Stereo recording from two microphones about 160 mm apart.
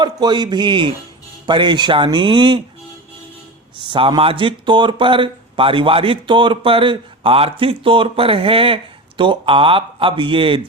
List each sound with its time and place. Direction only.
0.0 s speech: 25° right (ahead or behind)
3.8 s speech: 30° right (ahead or behind)